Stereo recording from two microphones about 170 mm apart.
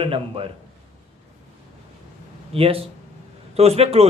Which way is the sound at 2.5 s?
35° right (ahead or behind).